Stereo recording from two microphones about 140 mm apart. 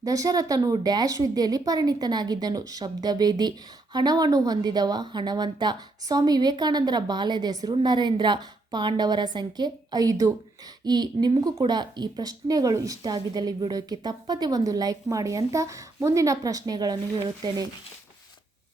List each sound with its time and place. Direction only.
0.0 s speech: 25° right (ahead or behind)